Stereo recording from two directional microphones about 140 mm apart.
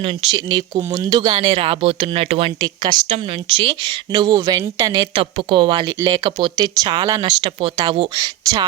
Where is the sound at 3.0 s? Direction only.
40° right (ahead or behind); by 5.1 s 25° right (ahead or behind).